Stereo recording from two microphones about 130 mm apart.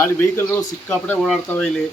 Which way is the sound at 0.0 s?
20° left (ahead or behind).